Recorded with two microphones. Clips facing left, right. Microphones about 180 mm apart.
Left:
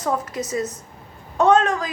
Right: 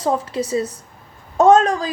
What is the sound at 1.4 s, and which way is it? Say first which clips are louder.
Speech: right 4 dB; 40° right (ahead or behind).